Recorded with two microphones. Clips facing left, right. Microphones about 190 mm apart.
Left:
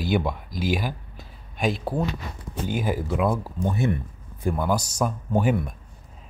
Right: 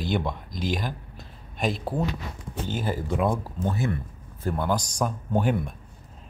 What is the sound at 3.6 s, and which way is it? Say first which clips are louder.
A man's voice: left 3 dB; 15° left (ahead or behind).